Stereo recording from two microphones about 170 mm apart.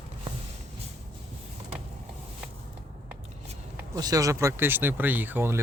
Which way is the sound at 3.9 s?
20° right (ahead or behind).